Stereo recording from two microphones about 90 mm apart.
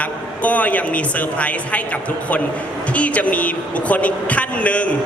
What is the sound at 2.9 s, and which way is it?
A man's voice, 15° left (ahead or behind).